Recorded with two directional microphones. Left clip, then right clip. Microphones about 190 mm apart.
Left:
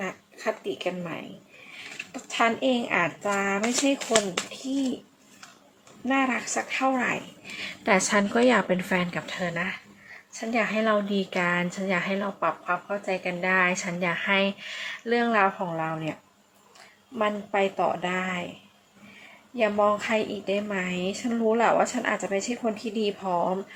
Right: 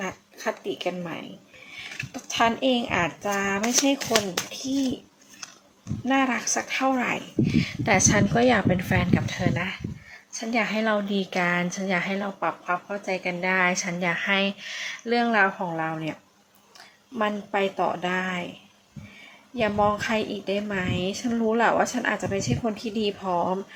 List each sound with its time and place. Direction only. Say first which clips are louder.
0.0 s a woman's voice: right 1 dB; 10° right (ahead or behind)
3.9 s speech: even; 25° right (ahead or behind)
4.5 s a woman's voice: right 2 dB; 10° right (ahead or behind)
6.1 s a woman's voice: right 2 dB; 10° right (ahead or behind)
17.2 s a woman's voice: even; 10° right (ahead or behind)
19.5 s a woman's voice: even; 10° right (ahead or behind)